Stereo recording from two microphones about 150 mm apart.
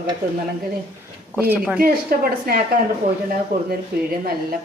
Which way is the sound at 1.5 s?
5° right (ahead or behind).